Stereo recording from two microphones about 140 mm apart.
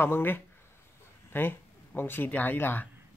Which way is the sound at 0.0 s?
15° left (ahead or behind).